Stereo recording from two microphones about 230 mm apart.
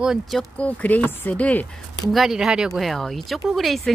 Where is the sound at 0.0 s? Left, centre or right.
Centre.